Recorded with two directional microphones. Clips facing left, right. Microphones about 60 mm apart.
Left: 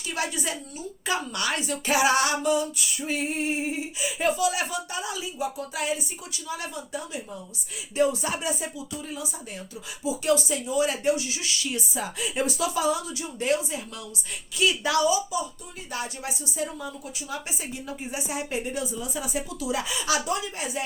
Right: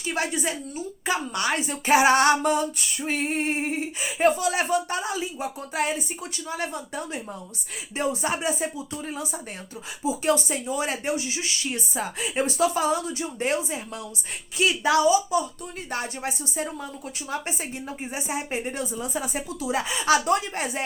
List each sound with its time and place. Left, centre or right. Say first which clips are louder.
0.1 s a woman's voice: right 3 dB; right
7.9 s speech: left 2 dB; right
15.9 s speech: right 2 dB; right
17.8 s speech: right 1 dB; right